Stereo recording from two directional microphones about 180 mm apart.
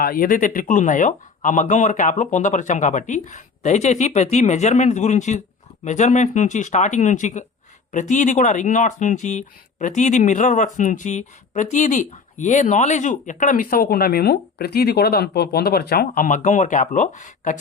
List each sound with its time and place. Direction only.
0.0 s speech: 55° left (ahead or behind)